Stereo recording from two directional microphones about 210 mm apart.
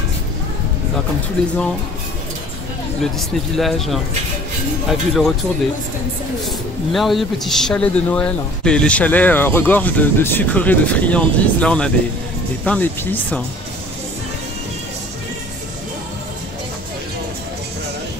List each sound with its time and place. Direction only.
3.0 s speech: centre (ahead or behind)
6.9 s a man's voice: centre (ahead or behind)